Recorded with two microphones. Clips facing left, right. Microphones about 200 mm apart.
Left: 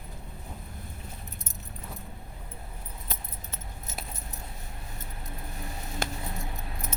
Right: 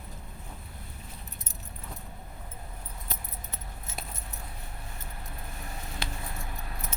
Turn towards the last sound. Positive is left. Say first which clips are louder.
# left 5 dB
turn(degrees=45)  # may be behind; listen again after turning